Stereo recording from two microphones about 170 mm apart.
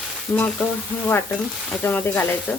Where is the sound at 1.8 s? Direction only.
10° left (ahead or behind).